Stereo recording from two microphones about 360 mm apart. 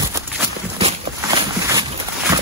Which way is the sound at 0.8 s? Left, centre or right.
Centre.